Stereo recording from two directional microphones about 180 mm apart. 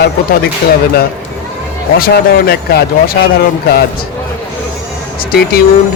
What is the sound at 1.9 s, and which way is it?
Speech, 55° left (ahead or behind).